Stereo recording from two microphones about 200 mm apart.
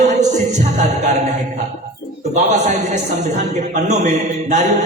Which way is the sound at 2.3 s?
35° right (ahead or behind).